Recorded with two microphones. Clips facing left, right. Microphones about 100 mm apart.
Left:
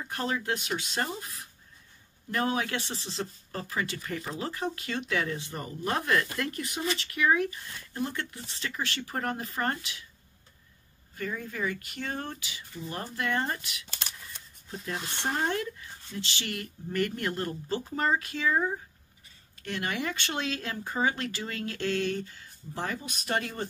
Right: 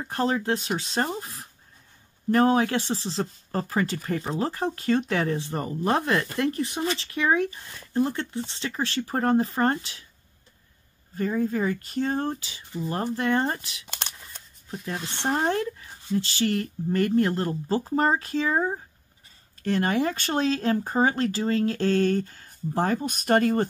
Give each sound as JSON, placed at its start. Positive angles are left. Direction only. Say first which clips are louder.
{"t": 0.0, "sound": "speech", "louder": "right 6 dB", "side_deg": -35}
{"t": 11.1, "sound": "speech", "louder": "right 9 dB", "side_deg": -35}
{"t": 15.0, "sound": "speech", "louder": "right 6 dB", "side_deg": -30}